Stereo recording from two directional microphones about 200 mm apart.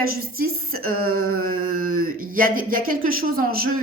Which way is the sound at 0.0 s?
45° right (ahead or behind).